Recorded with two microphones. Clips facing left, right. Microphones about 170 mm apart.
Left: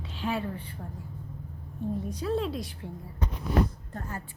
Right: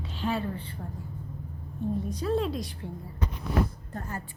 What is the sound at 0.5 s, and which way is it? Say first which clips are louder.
Speech: right 1 dB; 30° right (ahead or behind).